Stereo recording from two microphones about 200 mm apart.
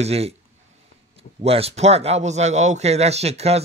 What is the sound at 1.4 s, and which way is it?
A man's voice, 30° right (ahead or behind).